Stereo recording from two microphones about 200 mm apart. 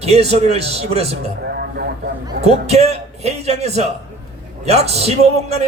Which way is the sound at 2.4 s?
30° right (ahead or behind).